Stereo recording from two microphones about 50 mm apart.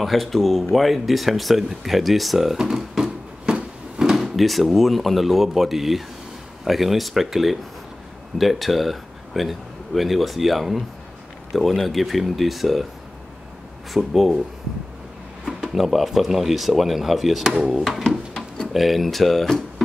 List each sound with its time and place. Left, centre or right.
0.0 s speech: centre
3.0 s a sound: centre
3.5 s a sound: centre
4.0 s speech: centre
13.9 s speech: centre
15.4 s speech: centre